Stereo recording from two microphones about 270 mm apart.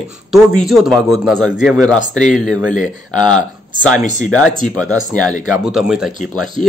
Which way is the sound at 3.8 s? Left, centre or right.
Centre.